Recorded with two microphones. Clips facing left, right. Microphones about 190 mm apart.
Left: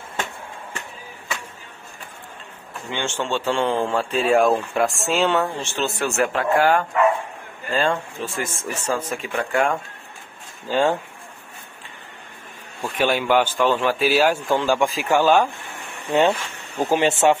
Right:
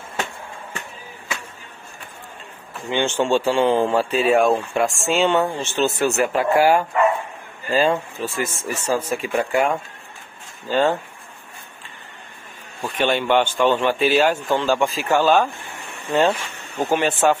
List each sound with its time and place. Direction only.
2.9 s speech: 15° right (ahead or behind)
10.7 s speech: 10° left (ahead or behind)
12.8 s speech: 5° left (ahead or behind)
16.2 s speech: centre (ahead or behind)
16.9 s speech: 25° left (ahead or behind)